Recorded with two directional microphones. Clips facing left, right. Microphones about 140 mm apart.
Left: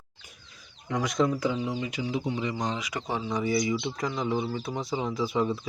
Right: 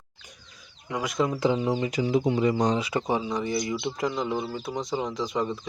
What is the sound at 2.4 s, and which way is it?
Speech, 45° right (ahead or behind).